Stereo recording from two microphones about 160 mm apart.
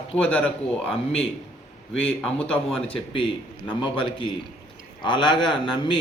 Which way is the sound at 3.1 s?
35° left (ahead or behind).